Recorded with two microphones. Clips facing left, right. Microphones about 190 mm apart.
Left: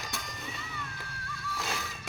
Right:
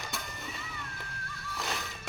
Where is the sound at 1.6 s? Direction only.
Centre (ahead or behind).